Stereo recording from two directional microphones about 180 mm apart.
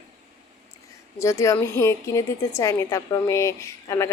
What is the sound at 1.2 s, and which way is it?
A woman's voice, 15° left (ahead or behind).